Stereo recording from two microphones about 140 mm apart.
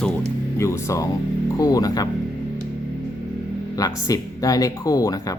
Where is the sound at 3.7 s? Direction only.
25° left (ahead or behind).